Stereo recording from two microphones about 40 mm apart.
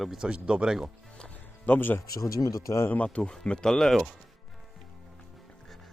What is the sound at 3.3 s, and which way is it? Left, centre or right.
Speech, left.